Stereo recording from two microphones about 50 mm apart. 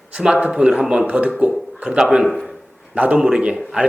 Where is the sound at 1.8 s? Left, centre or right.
Centre.